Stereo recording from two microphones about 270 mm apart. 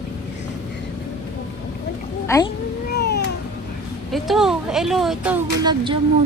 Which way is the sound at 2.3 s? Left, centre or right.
Centre.